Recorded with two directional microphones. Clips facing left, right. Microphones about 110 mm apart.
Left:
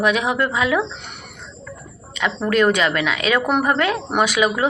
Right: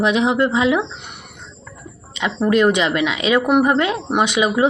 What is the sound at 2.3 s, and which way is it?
Speech, 20° right (ahead or behind).